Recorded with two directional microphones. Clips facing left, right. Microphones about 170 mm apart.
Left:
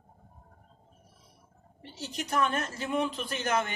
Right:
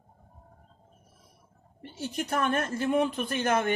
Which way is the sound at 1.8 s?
55° right (ahead or behind).